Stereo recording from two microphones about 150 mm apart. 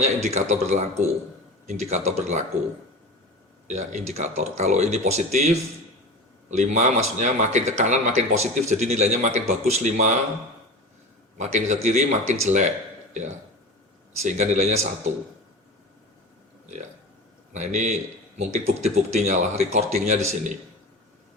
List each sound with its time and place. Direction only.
0.0 s speech: 45° right (ahead or behind)
3.7 s speech: 50° right (ahead or behind)
6.6 s speech: 55° right (ahead or behind)
11.3 s speech: 50° right (ahead or behind)
14.2 s speech: 50° right (ahead or behind)
17.5 s speech: 50° right (ahead or behind)